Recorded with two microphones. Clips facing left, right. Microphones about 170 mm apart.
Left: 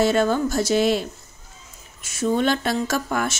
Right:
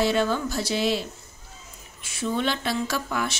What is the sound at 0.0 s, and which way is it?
A woman's voice, 45° left (ahead or behind).